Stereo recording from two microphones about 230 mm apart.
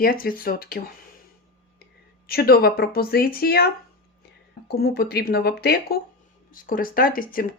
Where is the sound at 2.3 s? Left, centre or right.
Left.